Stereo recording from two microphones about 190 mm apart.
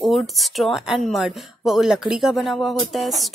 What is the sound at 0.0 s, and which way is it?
Speech, centre (ahead or behind).